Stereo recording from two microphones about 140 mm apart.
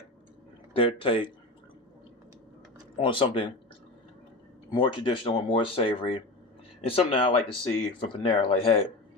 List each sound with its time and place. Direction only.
0.8 s speech: 40° left (ahead or behind)
3.0 s speech: 40° left (ahead or behind)
4.7 s speech: 35° left (ahead or behind)